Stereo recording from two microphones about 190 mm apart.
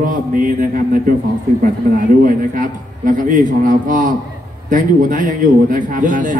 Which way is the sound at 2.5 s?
45° right (ahead or behind).